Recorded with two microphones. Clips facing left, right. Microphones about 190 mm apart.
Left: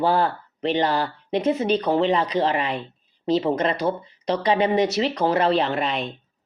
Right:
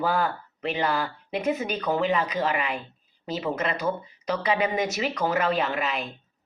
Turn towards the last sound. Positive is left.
turn(degrees=35)  # may be behind; listen again after turning